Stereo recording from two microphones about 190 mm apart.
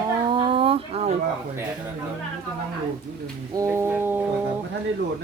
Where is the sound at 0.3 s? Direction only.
25° right (ahead or behind).